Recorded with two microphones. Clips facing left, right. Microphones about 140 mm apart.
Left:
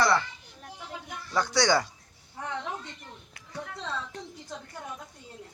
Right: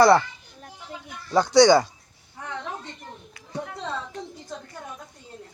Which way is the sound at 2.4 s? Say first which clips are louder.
Even; 15° left (ahead or behind).